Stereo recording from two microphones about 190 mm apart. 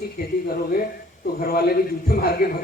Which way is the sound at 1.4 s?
55° left (ahead or behind).